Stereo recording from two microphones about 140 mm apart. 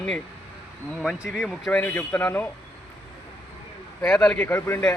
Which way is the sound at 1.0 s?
5° right (ahead or behind).